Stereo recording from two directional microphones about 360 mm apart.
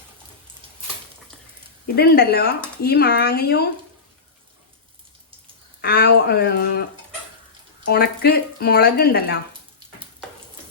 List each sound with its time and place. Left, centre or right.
2.0 s speech: left
5.8 s speech: left
7.9 s speech: left